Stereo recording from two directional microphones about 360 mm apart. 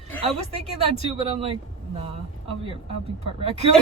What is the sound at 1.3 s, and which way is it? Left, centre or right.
Speech, centre.